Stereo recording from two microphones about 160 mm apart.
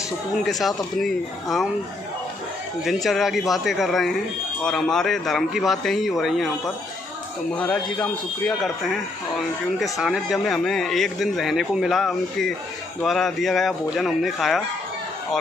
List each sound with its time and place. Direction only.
0.4 s speech: centre (ahead or behind)
2.8 s a man's voice: centre (ahead or behind)